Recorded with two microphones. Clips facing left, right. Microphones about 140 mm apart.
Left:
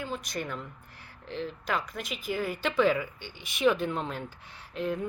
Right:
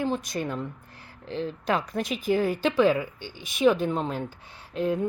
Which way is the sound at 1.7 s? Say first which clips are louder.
Right 7 dB; 30° right (ahead or behind).